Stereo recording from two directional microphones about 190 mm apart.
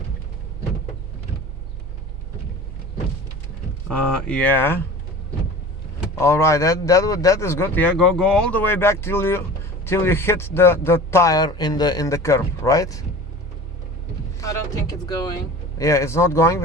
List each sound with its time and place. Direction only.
3.8 s speech: 5° left (ahead or behind)
6.1 s speech: 15° left (ahead or behind)
14.3 s speech: 15° left (ahead or behind)